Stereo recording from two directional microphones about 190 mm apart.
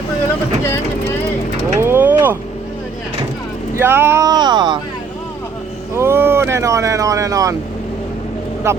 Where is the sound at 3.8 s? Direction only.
10° right (ahead or behind).